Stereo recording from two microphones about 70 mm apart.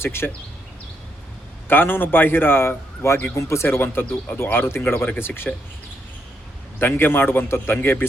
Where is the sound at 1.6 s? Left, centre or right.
Left.